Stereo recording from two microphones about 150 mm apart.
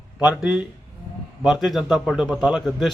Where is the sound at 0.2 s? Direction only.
10° right (ahead or behind).